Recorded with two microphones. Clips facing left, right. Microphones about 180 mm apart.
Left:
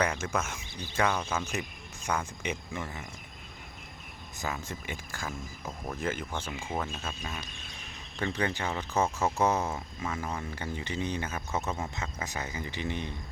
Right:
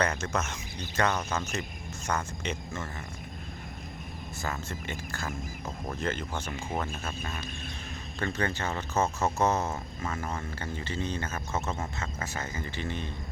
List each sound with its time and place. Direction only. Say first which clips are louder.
0.0 s speech: even; 10° left (ahead or behind)
4.4 s speech: even; 15° left (ahead or behind)